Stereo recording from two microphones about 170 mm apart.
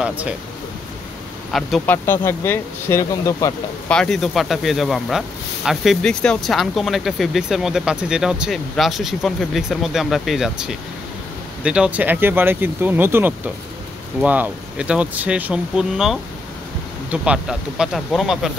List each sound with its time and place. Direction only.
1.5 s speech: centre (ahead or behind)
1.9 s speech: 15° left (ahead or behind)
3.9 s speech: 5° left (ahead or behind)